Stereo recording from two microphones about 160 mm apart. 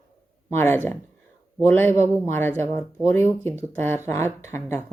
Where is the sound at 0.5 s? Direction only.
15° left (ahead or behind).